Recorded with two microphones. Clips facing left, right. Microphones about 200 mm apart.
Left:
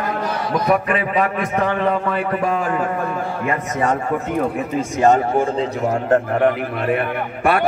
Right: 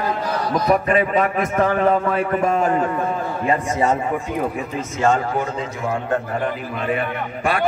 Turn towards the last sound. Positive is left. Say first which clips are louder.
# left 4 dB
turn(degrees=60)  # may be behind; listen again after turning